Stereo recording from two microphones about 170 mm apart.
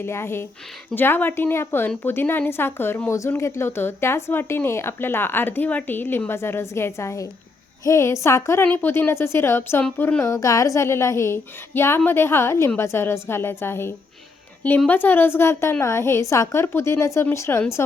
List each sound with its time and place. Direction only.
0.0 s a woman's voice: 15° left (ahead or behind)